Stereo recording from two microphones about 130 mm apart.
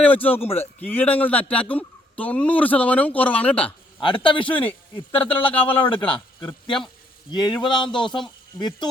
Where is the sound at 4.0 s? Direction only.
40° left (ahead or behind).